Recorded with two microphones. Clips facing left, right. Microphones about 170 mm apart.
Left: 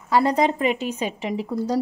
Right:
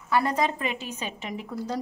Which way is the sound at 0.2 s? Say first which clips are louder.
Left 6 dB; 20° left (ahead or behind).